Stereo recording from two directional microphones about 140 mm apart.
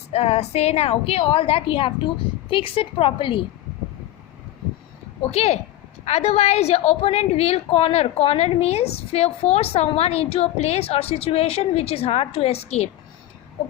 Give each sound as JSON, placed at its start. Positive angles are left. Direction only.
{"t": 0.1, "sound": "a woman's voice", "side_deg": 50}
{"t": 5.3, "sound": "a woman's voice", "side_deg": 50}